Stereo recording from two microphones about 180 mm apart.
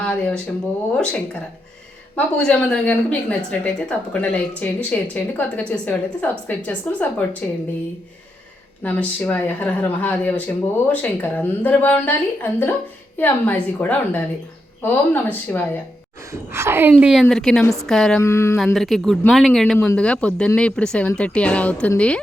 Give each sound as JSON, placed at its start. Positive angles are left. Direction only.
{"t": 0.9, "sound": "a woman's voice", "side_deg": 5}
{"t": 8.8, "sound": "a woman's voice", "side_deg": 10}
{"t": 16.3, "sound": "a woman's voice", "side_deg": -15}
{"t": 18.2, "sound": "a woman's voice", "side_deg": 15}
{"t": 18.5, "sound": "a woman's voice", "side_deg": 0}